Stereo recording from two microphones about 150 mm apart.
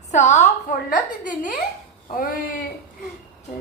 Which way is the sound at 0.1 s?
50° left (ahead or behind).